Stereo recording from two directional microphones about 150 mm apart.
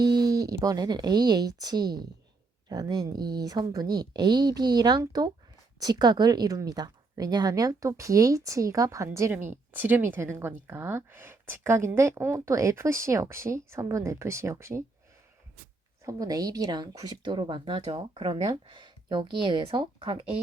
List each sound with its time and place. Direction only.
0.0 s a woman's voice: 25° right (ahead or behind)
16.0 s speech: 25° right (ahead or behind)